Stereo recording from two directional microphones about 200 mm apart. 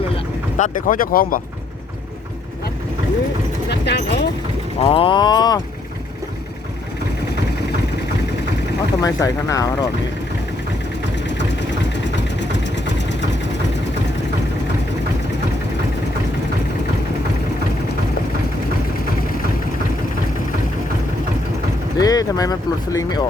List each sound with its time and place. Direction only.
0.5 s speech: 40° left (ahead or behind)
3.7 s speech: 55° left (ahead or behind)
4.8 s speech: 25° left (ahead or behind)
9.0 s speech: 15° left (ahead or behind)
11.9 s vehicle: 60° left (ahead or behind)
21.9 s speech: 20° left (ahead or behind)